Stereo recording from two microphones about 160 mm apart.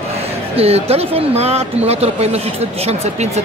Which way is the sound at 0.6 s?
40° right (ahead or behind).